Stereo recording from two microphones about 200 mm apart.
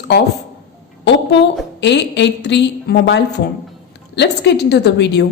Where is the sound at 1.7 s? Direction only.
60° left (ahead or behind).